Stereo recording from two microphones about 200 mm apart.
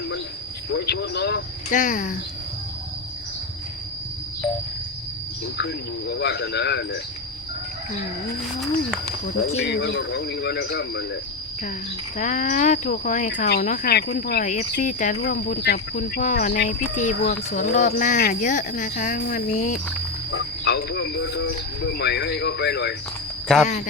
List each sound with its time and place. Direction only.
0.7 s speech: 55° left (ahead or behind)
1.7 s speech: 40° left (ahead or behind)
5.5 s speech: 60° left (ahead or behind)
9.6 s speech: 55° left (ahead or behind)
12.1 s speech: 40° left (ahead or behind)
20.3 s speech: 55° left (ahead or behind)
23.6 s speech: 35° left (ahead or behind)